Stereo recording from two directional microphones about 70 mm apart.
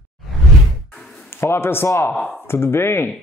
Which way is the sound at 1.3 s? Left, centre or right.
Left.